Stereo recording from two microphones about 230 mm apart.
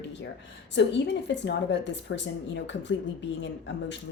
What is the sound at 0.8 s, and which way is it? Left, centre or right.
A woman's voice, left.